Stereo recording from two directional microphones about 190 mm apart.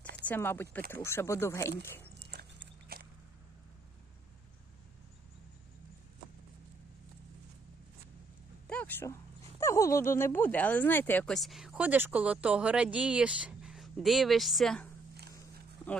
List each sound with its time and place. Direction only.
0.2 s speech: 10° left (ahead or behind)
2.1 s horse: 60° right (ahead or behind)
8.7 s dog: 10° left (ahead or behind)
9.6 s speech: 15° left (ahead or behind)